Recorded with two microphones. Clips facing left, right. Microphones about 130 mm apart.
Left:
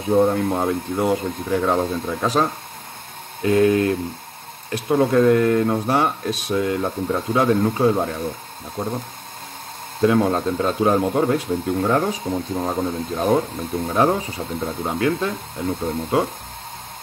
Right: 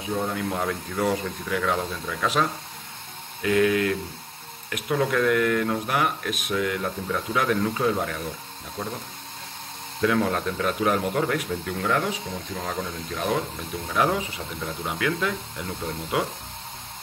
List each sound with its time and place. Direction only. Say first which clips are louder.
0.1 s speech: left 11 dB; 50° left (ahead or behind)
0.5 s speech: left 6 dB; 25° left (ahead or behind)
10.0 s speech: left 6 dB; 30° left (ahead or behind)